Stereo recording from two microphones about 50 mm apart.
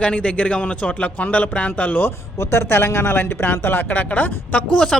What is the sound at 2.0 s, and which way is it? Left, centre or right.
A woman's voice, left.